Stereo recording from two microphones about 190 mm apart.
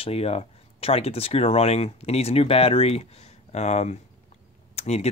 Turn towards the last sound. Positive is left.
turn(degrees=35)  # may be behind; listen again after turning